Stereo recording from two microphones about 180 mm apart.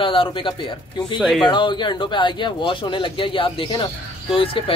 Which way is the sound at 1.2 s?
Centre (ahead or behind).